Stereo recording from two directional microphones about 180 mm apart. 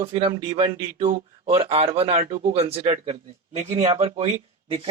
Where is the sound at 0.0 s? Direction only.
30° right (ahead or behind).